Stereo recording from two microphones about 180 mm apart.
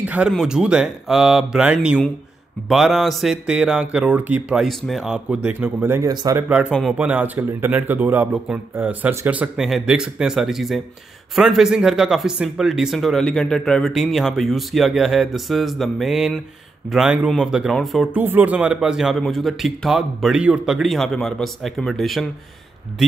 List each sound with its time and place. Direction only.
0.0 s speech: 10° right (ahead or behind)
6.7 s speech: centre (ahead or behind)